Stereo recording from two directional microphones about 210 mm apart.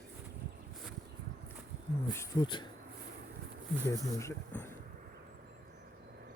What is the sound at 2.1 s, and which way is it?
Speech, 20° left (ahead or behind).